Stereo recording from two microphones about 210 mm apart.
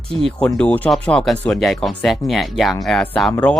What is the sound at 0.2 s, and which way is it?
Speech, centre (ahead or behind).